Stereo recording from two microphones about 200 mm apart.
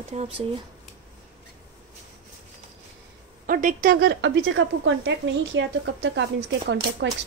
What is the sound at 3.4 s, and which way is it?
Speech, 45° right (ahead or behind).